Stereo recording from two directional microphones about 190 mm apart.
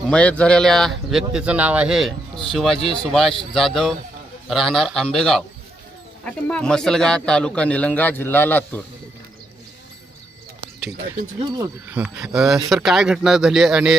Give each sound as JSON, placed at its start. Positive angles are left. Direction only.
{"t": 0.1, "sound": "a man's voice", "side_deg": 5}
{"t": 2.7, "sound": "speech", "side_deg": 30}
{"t": 3.0, "sound": "a man's voice", "side_deg": 0}
{"t": 11.3, "sound": "speech", "side_deg": -20}
{"t": 11.9, "sound": "a man's voice", "side_deg": -5}